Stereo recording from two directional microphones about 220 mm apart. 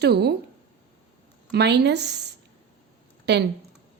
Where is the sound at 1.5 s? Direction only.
50° right (ahead or behind).